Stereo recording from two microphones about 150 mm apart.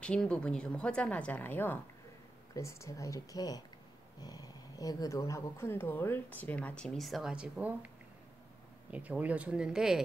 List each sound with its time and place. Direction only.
0.0 s speech: 5° left (ahead or behind); by 7.9 s 10° right (ahead or behind)
8.9 s speech: 10° right (ahead or behind)